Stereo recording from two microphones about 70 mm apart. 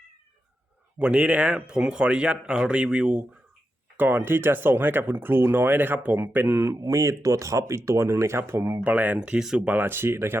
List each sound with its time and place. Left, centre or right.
0.9 s speech: centre
3.9 s speech: right
8.7 s speech: right
9.2 s speech: centre
9.8 s speech: right